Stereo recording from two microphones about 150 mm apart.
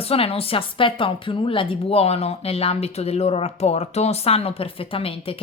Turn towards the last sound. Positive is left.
turn(degrees=40)  # may be behind; listen again after turning